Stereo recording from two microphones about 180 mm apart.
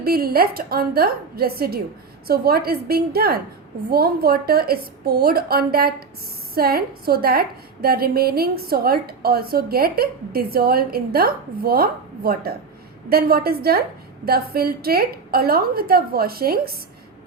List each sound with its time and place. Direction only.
0.0 s a woman's voice: 55° right (ahead or behind)